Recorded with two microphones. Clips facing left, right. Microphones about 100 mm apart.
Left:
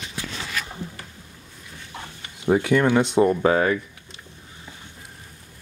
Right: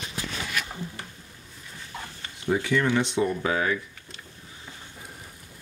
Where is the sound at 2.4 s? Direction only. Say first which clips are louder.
Left 5 dB; 55° left (ahead or behind).